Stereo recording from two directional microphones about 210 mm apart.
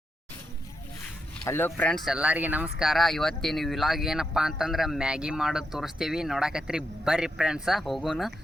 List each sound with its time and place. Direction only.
1.5 s speech: 10° left (ahead or behind)